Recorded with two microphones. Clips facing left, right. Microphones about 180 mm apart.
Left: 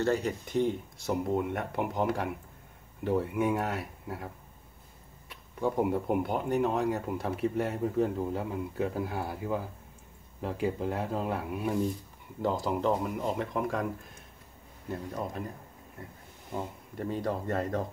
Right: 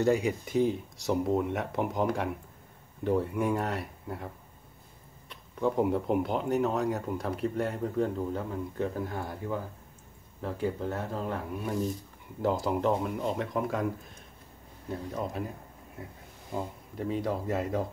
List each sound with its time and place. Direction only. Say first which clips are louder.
0.0 s speech: right 3 dB; 10° right (ahead or behind)
5.3 s speech: right 2 dB; 5° left (ahead or behind)
12.4 s speech: right 1 dB; 5° right (ahead or behind)
16.9 s speech: right 1 dB; centre (ahead or behind)